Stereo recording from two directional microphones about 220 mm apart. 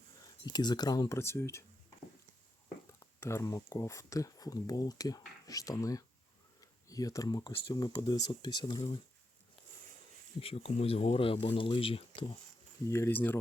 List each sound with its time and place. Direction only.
0.4 s speech: 20° left (ahead or behind)
3.2 s speech: 10° left (ahead or behind)
10.4 s speech: 25° left (ahead or behind)
12.9 s speech: 10° left (ahead or behind)